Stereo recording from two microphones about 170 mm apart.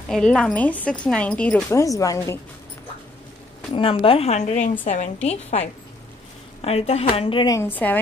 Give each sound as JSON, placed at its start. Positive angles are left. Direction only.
{"t": 0.1, "sound": "a woman's voice", "side_deg": 5}
{"t": 3.7, "sound": "speech", "side_deg": 30}
{"t": 7.5, "sound": "a woman's voice", "side_deg": 10}